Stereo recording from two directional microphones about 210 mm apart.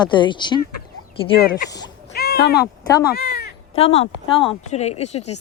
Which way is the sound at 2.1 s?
50° left (ahead or behind).